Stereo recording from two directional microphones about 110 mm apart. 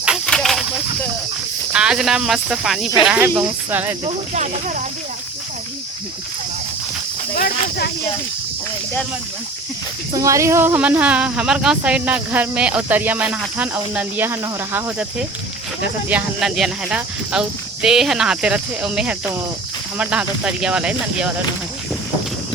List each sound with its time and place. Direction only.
0.3 s a sound: 5° left (ahead or behind)
1.7 s speech: 10° right (ahead or behind)
3.2 s speech: 20° right (ahead or behind)
10.1 s speech: 30° right (ahead or behind)
10.8 s speech: 10° right (ahead or behind)
16.0 s speech: 10° right (ahead or behind)